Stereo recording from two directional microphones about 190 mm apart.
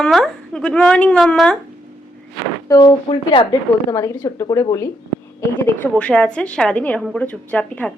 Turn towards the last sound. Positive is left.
turn(degrees=5)  # may be behind; listen again after turning